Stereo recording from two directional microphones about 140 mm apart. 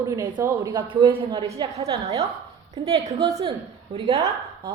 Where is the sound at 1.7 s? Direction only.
45° right (ahead or behind).